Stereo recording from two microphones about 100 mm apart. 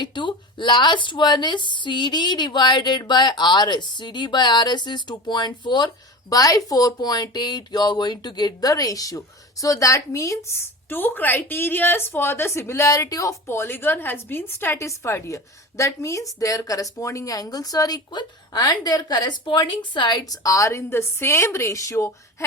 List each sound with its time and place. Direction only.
0.0 s a woman's voice: 50° left (ahead or behind)
6.3 s speech: 35° left (ahead or behind)